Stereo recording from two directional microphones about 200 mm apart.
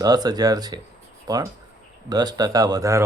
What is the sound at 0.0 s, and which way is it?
Speech, 20° right (ahead or behind).